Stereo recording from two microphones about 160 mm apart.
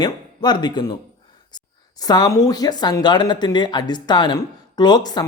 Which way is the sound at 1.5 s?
25° left (ahead or behind).